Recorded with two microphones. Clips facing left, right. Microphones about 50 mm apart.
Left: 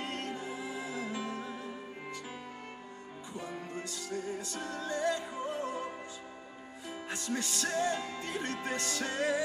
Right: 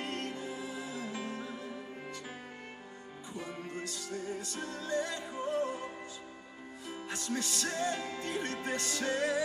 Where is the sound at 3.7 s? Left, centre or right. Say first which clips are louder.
Left 1 dB; left.